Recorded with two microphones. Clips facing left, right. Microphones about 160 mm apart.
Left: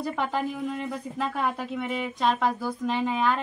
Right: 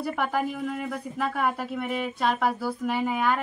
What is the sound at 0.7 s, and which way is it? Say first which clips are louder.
Speech: even; 20° left (ahead or behind).